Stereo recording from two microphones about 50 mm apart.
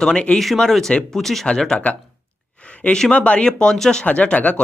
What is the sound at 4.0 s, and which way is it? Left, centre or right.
Speech, left.